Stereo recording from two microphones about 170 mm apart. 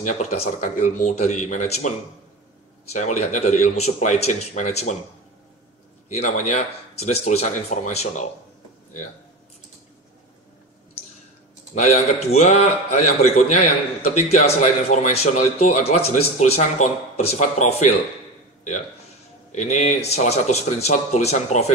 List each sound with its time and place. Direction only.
0.0 s speech: 40° left (ahead or behind)
6.0 s speech: 45° left (ahead or behind)
11.7 s a man's voice: 40° left (ahead or behind)
19.5 s a man's voice: 45° left (ahead or behind)